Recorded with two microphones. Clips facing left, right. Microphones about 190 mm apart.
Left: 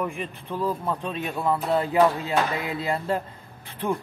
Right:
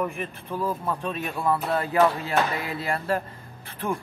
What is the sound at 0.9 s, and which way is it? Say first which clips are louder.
A man's voice: even; 20° left (ahead or behind).